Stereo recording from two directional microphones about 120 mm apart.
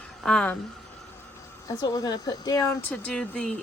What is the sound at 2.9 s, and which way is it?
Speech, 10° left (ahead or behind).